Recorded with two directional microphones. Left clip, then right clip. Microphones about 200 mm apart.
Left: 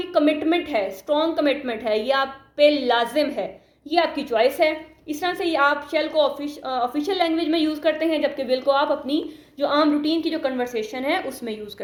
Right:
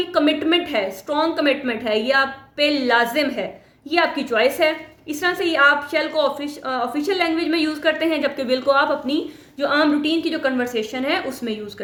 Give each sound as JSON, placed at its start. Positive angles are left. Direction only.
{"t": 0.1, "sound": "a woman's voice", "side_deg": -20}